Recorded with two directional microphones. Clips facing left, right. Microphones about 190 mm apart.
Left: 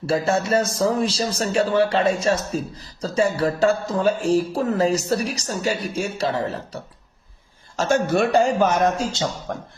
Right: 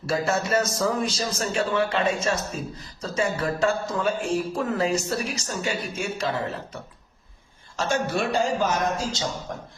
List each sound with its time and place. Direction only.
0.0 s a man's voice: 30° left (ahead or behind)
7.8 s speech: 45° left (ahead or behind)